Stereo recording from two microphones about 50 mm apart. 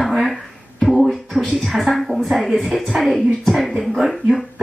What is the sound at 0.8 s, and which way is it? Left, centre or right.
Beatboxing, centre.